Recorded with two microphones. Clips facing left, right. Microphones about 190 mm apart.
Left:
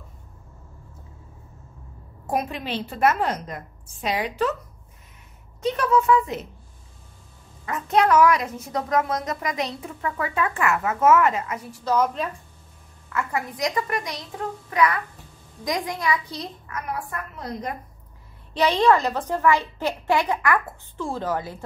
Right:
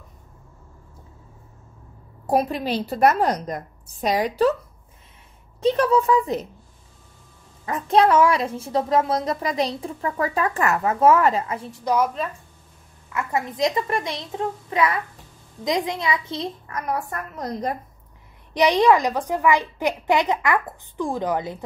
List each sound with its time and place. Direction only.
2.2 s a woman's voice: 35° right (ahead or behind)
5.6 s a woman's voice: 35° right (ahead or behind)
7.6 s a woman's voice: 30° right (ahead or behind); by 12.1 s 15° right (ahead or behind)
13.1 s a woman's voice: 25° right (ahead or behind)
16.6 s a woman's voice: 40° right (ahead or behind)
18.5 s a woman's voice: 15° right (ahead or behind)